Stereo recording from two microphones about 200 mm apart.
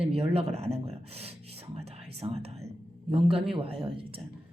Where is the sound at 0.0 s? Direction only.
30° right (ahead or behind).